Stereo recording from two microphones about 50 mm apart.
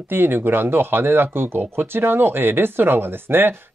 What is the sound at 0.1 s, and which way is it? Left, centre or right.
Speech, right.